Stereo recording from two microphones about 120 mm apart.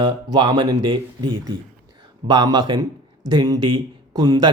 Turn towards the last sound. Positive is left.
turn(degrees=-35)  # may be behind; listen again after turning